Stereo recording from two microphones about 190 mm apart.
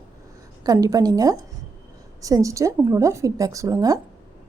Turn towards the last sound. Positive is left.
turn(degrees=-15)  # may be behind; listen again after turning